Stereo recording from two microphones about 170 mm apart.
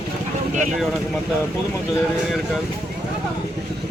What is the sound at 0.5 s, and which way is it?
Speech, 45° right (ahead or behind).